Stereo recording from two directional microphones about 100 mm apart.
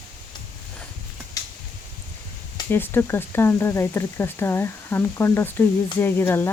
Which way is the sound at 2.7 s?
20° left (ahead or behind).